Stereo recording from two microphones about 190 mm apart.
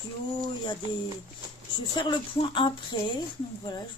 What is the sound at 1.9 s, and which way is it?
Speech, 25° left (ahead or behind).